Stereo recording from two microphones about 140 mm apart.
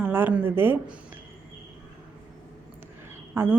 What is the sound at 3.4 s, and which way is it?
Speech, 15° right (ahead or behind).